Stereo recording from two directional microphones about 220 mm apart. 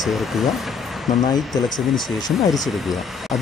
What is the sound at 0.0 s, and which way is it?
Speech, centre (ahead or behind).